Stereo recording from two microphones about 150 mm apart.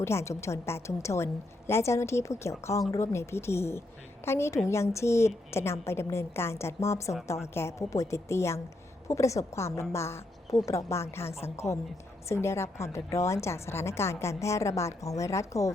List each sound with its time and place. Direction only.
0.0 s a woman's voice: 20° left (ahead or behind)